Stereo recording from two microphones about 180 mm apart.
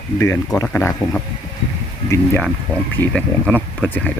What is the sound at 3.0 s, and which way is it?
Speech, 5° left (ahead or behind).